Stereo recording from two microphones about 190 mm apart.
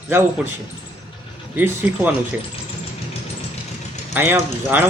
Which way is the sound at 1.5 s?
10° right (ahead or behind).